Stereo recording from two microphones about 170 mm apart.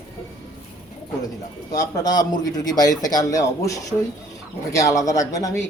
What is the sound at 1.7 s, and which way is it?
Speech, 20° left (ahead or behind).